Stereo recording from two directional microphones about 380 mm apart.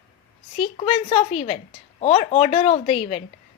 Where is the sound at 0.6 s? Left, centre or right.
Centre.